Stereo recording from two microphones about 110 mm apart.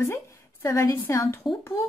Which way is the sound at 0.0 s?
20° left (ahead or behind).